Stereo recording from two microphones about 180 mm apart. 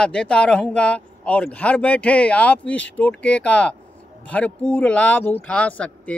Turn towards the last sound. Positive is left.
turn(degrees=5)  # may be behind; listen again after turning